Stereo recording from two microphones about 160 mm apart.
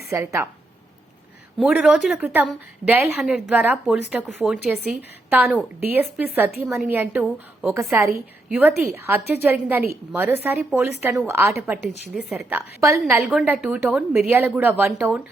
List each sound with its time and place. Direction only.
0.1 s a woman's voice: 20° right (ahead or behind)
1.5 s a woman's voice: 5° right (ahead or behind)
13.2 s a woman's voice: 5° right (ahead or behind)